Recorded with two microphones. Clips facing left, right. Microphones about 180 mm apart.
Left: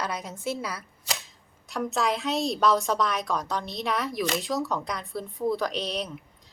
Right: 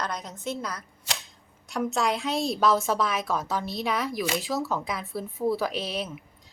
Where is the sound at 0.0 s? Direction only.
10° left (ahead or behind).